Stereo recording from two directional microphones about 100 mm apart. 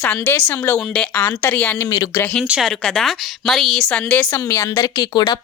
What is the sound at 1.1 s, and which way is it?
Speech, 20° left (ahead or behind).